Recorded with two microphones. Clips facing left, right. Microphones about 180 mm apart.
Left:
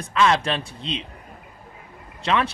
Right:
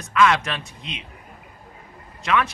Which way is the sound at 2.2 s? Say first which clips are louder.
Even; 30° left (ahead or behind).